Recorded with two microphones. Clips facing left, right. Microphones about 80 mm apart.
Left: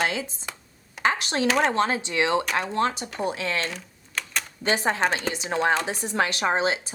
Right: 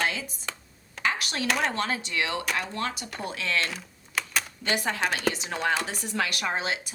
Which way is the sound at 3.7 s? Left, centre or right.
Centre.